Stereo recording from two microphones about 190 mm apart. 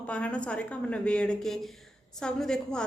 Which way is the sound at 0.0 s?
5° left (ahead or behind).